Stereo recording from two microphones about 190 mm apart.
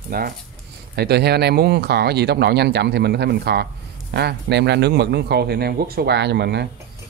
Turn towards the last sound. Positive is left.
turn(degrees=-60)  # may be behind; listen again after turning